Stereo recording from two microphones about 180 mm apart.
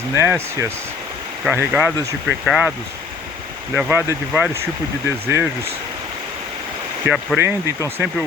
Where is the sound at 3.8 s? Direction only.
10° right (ahead or behind).